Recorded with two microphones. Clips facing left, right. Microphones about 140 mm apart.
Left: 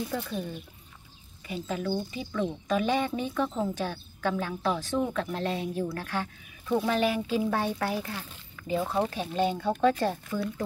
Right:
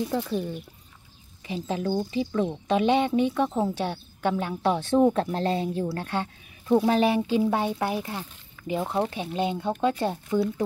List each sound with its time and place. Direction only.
1.5 s a woman's voice: 25° right (ahead or behind)
3.5 s speech: 30° right (ahead or behind)